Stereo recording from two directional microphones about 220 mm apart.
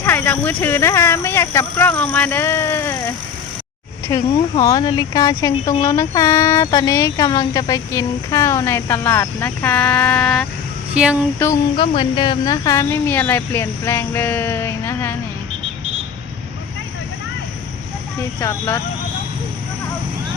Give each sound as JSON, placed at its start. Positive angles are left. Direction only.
{"t": 0.0, "sound": "speech", "side_deg": 10}
{"t": 4.1, "sound": "speech", "side_deg": 15}
{"t": 10.9, "sound": "a sound", "side_deg": -5}
{"t": 11.3, "sound": "speech", "side_deg": 15}
{"t": 18.3, "sound": "speech", "side_deg": 15}